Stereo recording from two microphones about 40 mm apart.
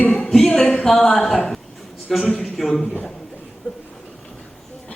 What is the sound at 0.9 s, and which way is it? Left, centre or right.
A woman's voice, centre.